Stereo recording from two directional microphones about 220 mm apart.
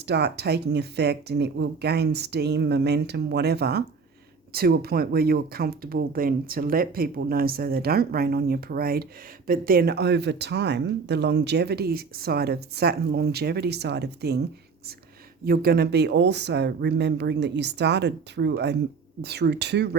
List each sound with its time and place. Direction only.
0.0 s speech: 50° right (ahead or behind)
15.4 s speech: 45° right (ahead or behind)